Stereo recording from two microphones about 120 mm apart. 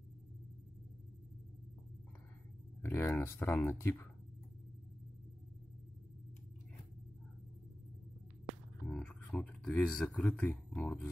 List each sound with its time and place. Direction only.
2.8 s speech: 20° left (ahead or behind)
8.8 s a sound: 10° left (ahead or behind)
10.1 s speech: 10° left (ahead or behind)